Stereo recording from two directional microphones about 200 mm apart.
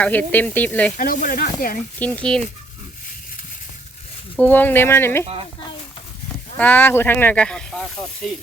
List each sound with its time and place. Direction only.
0.0 s speech: 5° left (ahead or behind)
0.9 s speech: 40° left (ahead or behind)
2.0 s speech: 5° left (ahead or behind)
4.4 s speech: 10° left (ahead or behind)
6.6 s speech: 10° left (ahead or behind)